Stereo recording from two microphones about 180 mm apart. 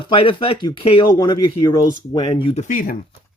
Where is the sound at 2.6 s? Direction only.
50° left (ahead or behind).